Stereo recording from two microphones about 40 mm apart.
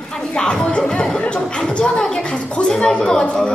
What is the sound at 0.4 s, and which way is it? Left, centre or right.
A woman's voice, centre.